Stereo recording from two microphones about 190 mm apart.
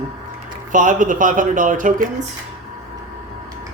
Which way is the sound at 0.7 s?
45° right (ahead or behind).